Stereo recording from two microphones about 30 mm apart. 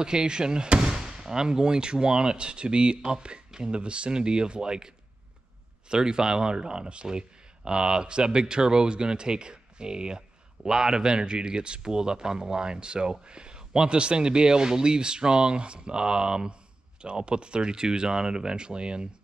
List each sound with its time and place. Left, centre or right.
0.0 s speech: right